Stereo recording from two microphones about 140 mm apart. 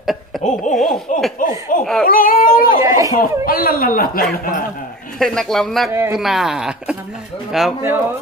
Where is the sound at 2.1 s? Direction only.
90° left.